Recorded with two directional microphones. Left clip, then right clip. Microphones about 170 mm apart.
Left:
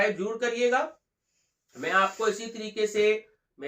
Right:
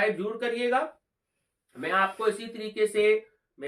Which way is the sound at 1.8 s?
15° right (ahead or behind).